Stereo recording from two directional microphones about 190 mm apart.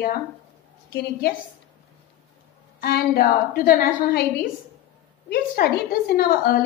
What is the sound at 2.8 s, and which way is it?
A woman's voice, 55° left (ahead or behind).